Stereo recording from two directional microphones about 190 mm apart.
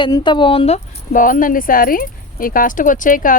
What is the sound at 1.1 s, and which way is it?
Speech, 45° left (ahead or behind).